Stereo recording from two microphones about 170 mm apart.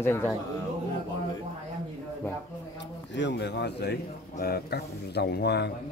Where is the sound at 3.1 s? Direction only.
85° left.